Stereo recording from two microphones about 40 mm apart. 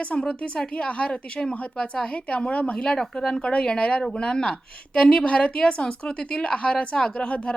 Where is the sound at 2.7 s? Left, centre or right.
Centre.